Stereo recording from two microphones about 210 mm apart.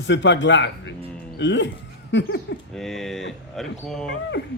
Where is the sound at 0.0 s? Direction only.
60° left (ahead or behind).